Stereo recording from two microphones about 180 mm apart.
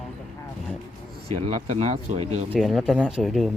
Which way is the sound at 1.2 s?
35° right (ahead or behind).